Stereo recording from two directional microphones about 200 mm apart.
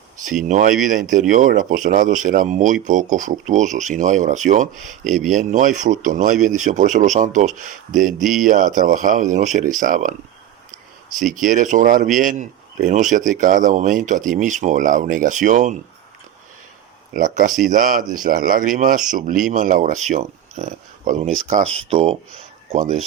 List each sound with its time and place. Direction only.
0.2 s speech: centre (ahead or behind)
0.4 s a man's voice: 40° right (ahead or behind)
5.0 s speech: centre (ahead or behind)
5.4 s a man's voice: 40° right (ahead or behind)
11.3 s a man's voice: 40° right (ahead or behind)
17.2 s a man's voice: 40° right (ahead or behind)